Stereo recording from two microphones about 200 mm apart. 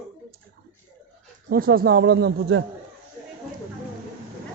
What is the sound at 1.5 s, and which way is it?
Speech, 45° right (ahead or behind).